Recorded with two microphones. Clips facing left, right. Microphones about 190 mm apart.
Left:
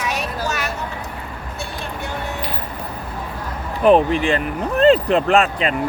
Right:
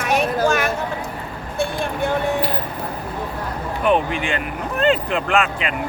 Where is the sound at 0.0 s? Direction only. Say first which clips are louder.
Right 6 dB; 50° right (ahead or behind).